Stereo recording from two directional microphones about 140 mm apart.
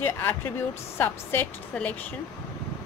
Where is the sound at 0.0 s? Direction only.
15° left (ahead or behind).